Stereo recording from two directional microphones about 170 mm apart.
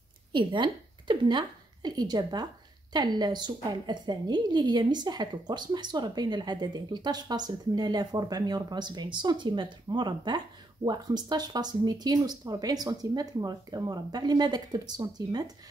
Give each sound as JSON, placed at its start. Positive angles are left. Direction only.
{"t": 0.3, "sound": "a woman's voice", "side_deg": -30}